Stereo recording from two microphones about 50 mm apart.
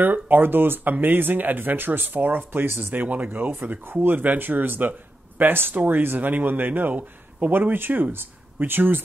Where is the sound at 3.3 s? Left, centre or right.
Right.